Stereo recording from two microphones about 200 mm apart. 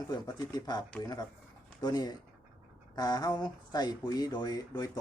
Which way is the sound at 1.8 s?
20° left (ahead or behind).